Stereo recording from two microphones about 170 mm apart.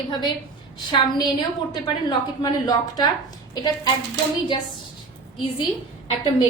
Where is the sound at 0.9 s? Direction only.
25° left (ahead or behind).